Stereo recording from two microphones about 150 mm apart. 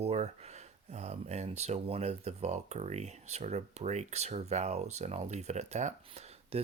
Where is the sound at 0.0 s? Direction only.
45° right (ahead or behind).